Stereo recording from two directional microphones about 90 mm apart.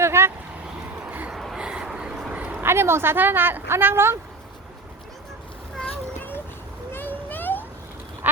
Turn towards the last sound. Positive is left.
turn(degrees=20)  # may be behind; listen again after turning